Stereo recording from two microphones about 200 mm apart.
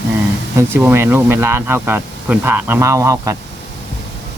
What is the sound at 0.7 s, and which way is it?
Speech, 10° right (ahead or behind).